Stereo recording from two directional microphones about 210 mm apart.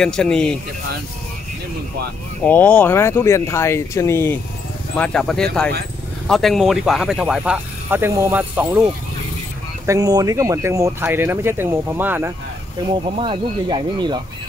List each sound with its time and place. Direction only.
0.0 s speech: 5° left (ahead or behind)
2.4 s speech: 10° left (ahead or behind); by 8.8 s 10° right (ahead or behind)
9.8 s speech: 15° right (ahead or behind)
13.0 s speech: 25° right (ahead or behind)